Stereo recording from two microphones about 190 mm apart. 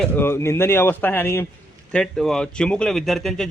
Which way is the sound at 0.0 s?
10° left (ahead or behind).